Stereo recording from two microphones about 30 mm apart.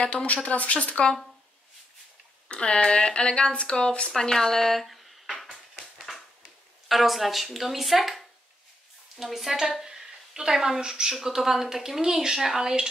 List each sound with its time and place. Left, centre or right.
0.0 s speech: left
0.5 s speech: left
2.4 s speech: left
4.2 s speech: centre
5.4 s a sound: centre
6.9 s a woman's voice: centre
9.8 s a sound: right
10.9 s speech: centre